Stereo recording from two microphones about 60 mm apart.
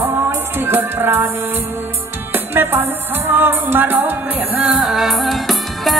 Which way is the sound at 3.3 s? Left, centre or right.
Right.